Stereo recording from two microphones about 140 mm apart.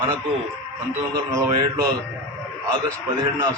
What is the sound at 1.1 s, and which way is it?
Speech, 25° right (ahead or behind).